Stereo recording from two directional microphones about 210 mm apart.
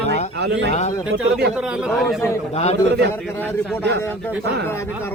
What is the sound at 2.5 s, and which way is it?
Speech, 30° left (ahead or behind).